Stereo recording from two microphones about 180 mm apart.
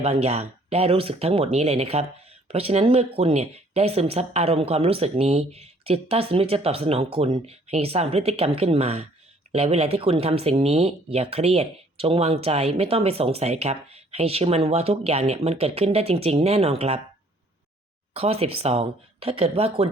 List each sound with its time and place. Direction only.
0.0 s speech: 35° right (ahead or behind)
18.1 s speech: 35° right (ahead or behind)